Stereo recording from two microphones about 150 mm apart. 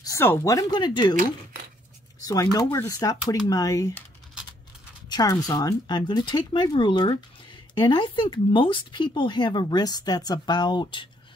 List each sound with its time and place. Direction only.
0.0 s speech: 15° left (ahead or behind)
2.2 s speech: 25° left (ahead or behind)
5.1 s speech: 25° left (ahead or behind)